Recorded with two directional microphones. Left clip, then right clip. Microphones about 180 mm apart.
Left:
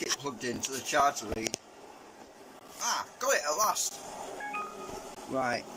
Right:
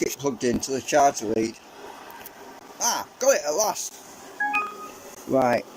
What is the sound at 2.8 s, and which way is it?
Speech, 35° right (ahead or behind).